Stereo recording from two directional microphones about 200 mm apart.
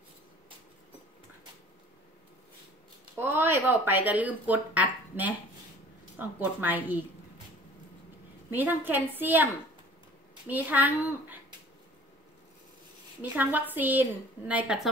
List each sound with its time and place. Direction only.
3.2 s speech: 10° right (ahead or behind)
8.5 s speech: 10° right (ahead or behind)
10.5 s speech: 10° right (ahead or behind)
13.2 s a woman's voice: 10° right (ahead or behind)